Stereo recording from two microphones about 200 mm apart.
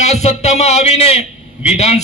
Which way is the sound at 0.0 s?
35° left (ahead or behind).